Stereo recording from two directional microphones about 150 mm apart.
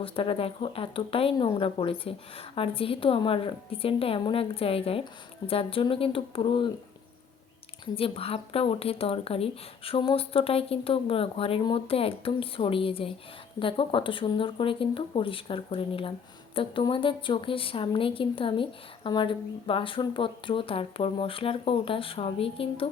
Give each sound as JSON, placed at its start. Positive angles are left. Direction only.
{"t": 0.0, "sound": "a woman's voice", "side_deg": 40}
{"t": 7.9, "sound": "a woman's voice", "side_deg": 40}